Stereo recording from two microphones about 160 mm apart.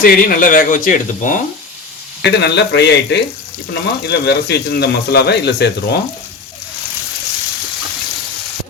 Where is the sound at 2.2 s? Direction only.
90° left.